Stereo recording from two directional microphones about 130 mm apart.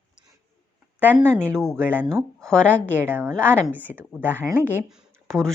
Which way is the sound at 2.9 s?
15° right (ahead or behind).